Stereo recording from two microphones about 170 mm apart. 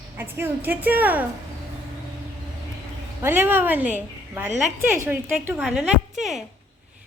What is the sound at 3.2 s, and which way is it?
A woman's voice, 15° right (ahead or behind).